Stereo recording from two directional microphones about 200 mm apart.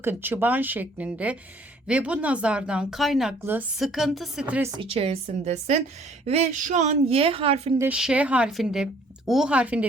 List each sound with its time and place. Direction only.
0.0 s speech: 10° right (ahead or behind)
4.8 s speech: 30° right (ahead or behind)
7.8 s speech: 5° right (ahead or behind)